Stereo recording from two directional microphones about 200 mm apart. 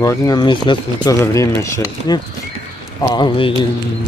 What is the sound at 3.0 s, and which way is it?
Speech, 20° left (ahead or behind).